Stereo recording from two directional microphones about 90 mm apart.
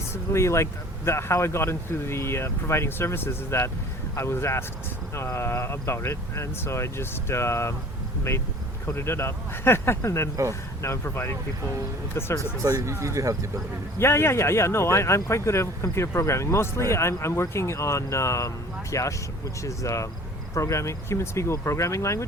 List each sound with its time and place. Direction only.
0.1 s speech: 30° left (ahead or behind)
8.9 s speech: 30° left (ahead or behind)
12.6 s speech: 35° right (ahead or behind)
14.0 s speech: 30° left (ahead or behind)